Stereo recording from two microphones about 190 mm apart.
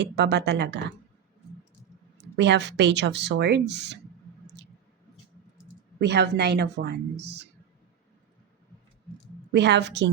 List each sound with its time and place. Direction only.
0.0 s speech: 65° right (ahead or behind)
2.1 s speech: 65° right (ahead or behind)
4.6 s a sound: 60° right (ahead or behind)
6.0 s speech: 60° right (ahead or behind)
9.5 s speech: 65° right (ahead or behind)